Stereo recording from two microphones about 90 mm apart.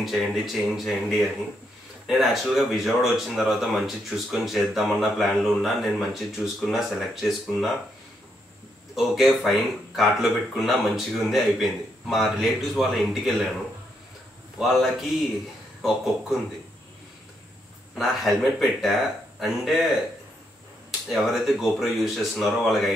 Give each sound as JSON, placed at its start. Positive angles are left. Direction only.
{"t": 0.0, "sound": "speech", "side_deg": 0}
{"t": 8.9, "sound": "speech", "side_deg": 0}
{"t": 14.6, "sound": "speech", "side_deg": -5}
{"t": 17.9, "sound": "speech", "side_deg": 0}
{"t": 21.1, "sound": "speech", "side_deg": 0}